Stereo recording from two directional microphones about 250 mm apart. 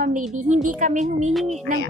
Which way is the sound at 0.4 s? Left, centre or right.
Right.